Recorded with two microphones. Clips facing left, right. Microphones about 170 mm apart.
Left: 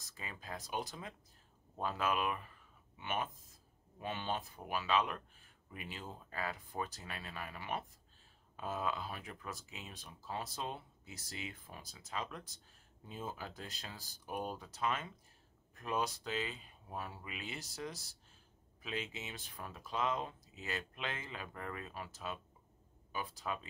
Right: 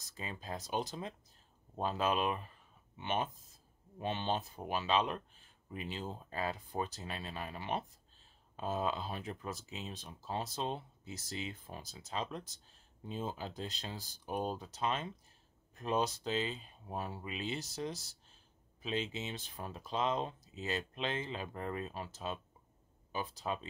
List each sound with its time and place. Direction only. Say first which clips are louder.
0.1 s speech: right 4 dB; 25° right (ahead or behind)